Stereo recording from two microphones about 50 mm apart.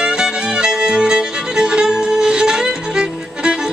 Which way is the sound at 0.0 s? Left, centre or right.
Centre.